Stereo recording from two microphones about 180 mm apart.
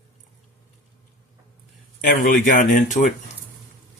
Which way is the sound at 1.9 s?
50° left (ahead or behind).